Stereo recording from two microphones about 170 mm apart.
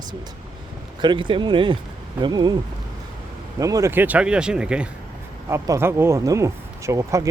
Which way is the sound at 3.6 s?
20° right (ahead or behind).